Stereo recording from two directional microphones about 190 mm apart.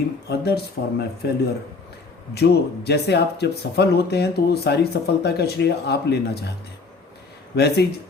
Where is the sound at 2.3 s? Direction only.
60° left (ahead or behind).